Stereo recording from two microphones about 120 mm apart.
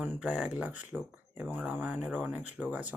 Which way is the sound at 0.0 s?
10° right (ahead or behind).